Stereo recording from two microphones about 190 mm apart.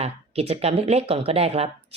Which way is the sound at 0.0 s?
30° right (ahead or behind).